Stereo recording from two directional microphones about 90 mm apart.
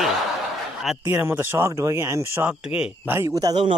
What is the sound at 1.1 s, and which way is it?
Speech, 25° right (ahead or behind).